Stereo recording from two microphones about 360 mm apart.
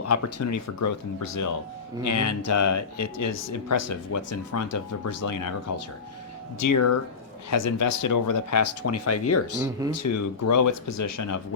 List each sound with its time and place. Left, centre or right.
0.0 s speech: left